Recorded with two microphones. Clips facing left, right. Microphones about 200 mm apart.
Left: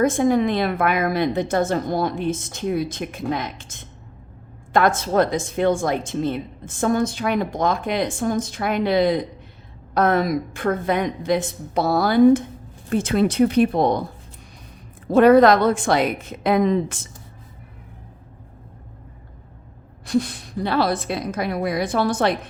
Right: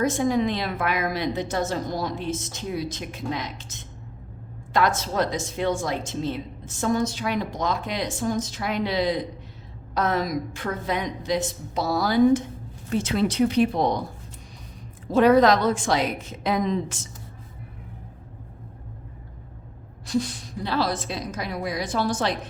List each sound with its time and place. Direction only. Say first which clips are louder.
0.0 s a woman's voice: left 4 dB; 55° left (ahead or behind)
15.0 s a woman's voice: left 4 dB; 60° left (ahead or behind)
20.1 s a woman's voice: left 4 dB; 60° left (ahead or behind)